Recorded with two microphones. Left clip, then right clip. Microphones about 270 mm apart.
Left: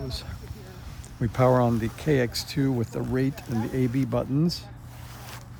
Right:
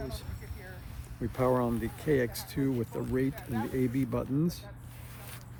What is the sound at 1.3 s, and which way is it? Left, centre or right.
Speech, left.